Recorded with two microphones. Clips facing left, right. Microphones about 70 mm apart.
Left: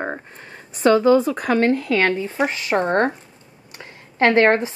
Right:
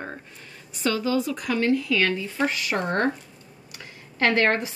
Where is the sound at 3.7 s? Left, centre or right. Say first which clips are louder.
Left 6 dB; left.